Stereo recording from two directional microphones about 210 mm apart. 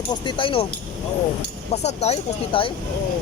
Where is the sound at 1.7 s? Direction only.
30° left (ahead or behind).